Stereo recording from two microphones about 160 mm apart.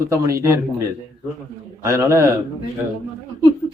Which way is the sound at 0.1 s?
20° right (ahead or behind).